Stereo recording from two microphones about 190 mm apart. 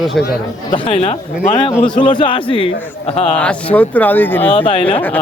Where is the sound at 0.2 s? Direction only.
Centre (ahead or behind).